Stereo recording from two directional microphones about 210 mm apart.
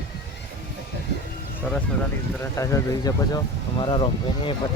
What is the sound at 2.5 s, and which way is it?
Speech, 15° left (ahead or behind).